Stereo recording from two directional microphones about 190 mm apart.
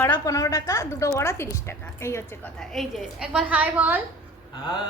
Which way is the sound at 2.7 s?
Centre (ahead or behind).